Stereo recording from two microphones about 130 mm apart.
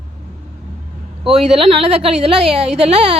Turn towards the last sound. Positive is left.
turn(degrees=-55)  # may be behind; listen again after turning